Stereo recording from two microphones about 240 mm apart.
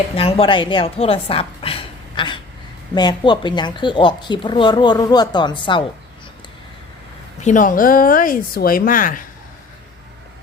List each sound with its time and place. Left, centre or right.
0.2 s a woman's voice: left
7.4 s speech: left